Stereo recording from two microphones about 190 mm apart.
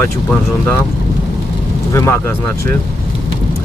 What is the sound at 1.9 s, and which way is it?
Speech, 15° left (ahead or behind).